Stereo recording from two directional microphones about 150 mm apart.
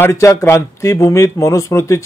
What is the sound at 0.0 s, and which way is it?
Speech, 20° left (ahead or behind).